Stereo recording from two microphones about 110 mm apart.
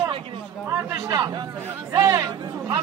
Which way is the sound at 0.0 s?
50° right (ahead or behind).